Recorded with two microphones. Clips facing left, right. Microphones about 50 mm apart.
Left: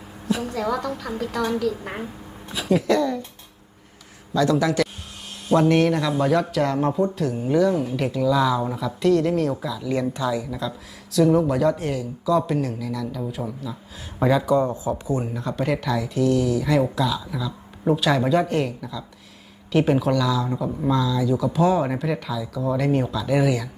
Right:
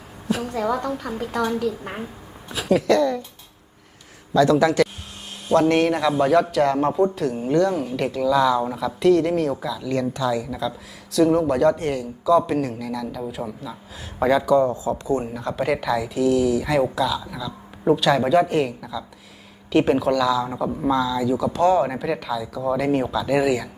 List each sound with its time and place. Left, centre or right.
0.3 s a woman's voice: centre
4.4 s a man's voice: centre
14.8 s speech: centre
15.2 s a man's voice: centre